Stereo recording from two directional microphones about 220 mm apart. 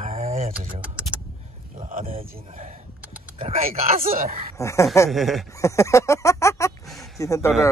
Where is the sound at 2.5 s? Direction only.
30° right (ahead or behind).